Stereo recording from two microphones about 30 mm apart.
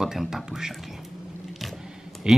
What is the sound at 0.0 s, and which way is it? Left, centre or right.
Speech, centre.